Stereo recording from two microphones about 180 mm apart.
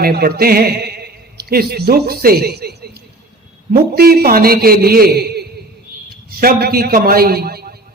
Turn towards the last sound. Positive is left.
turn(degrees=-60)  # may be behind; listen again after turning